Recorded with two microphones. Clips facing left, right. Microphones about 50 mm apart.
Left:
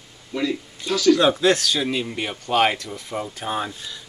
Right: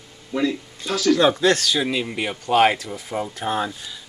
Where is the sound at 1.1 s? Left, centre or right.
Centre.